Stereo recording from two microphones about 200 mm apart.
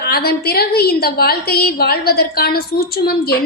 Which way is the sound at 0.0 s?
50° left (ahead or behind).